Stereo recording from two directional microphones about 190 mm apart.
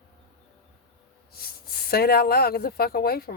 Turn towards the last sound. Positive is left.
turn(degrees=55)  # may be behind; listen again after turning